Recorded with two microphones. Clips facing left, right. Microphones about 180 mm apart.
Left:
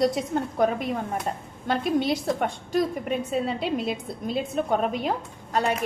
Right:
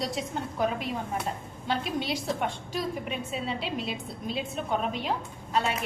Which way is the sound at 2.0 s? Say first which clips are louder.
Left 6 dB; 50° left (ahead or behind).